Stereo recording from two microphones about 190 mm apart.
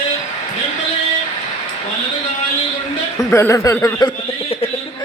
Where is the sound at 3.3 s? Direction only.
15° left (ahead or behind).